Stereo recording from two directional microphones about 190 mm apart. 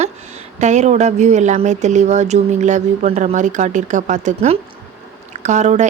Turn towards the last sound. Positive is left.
turn(degrees=-40)  # may be behind; listen again after turning